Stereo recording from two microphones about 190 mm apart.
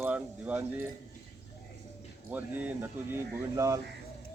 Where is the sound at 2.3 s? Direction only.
10° right (ahead or behind).